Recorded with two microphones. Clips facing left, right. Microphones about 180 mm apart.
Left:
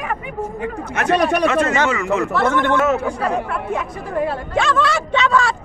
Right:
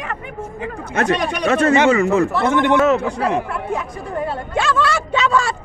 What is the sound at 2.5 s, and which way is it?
Speech, 15° right (ahead or behind).